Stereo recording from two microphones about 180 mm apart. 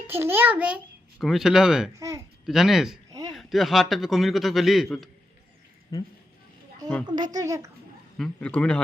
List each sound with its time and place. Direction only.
0.1 s a child's voice: 10° right (ahead or behind)
2.0 s a child's voice: 15° right (ahead or behind)
2.5 s a man's voice: centre (ahead or behind)
5.9 s speech: 20° left (ahead or behind)
7.2 s a child's voice: 20° right (ahead or behind)
8.2 s speech: 5° left (ahead or behind)